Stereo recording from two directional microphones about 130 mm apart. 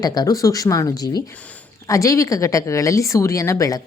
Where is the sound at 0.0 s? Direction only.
30° left (ahead or behind).